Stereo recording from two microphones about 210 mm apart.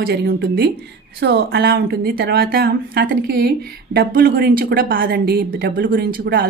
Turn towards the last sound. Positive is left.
turn(degrees=-50)  # may be behind; listen again after turning